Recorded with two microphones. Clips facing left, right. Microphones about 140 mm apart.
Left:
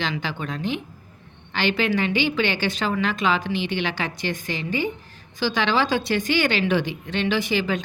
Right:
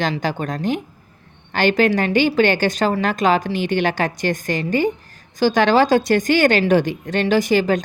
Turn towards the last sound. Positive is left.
turn(degrees=-45)  # may be behind; listen again after turning